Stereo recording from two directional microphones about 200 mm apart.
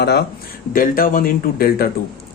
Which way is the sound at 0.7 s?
45° left (ahead or behind).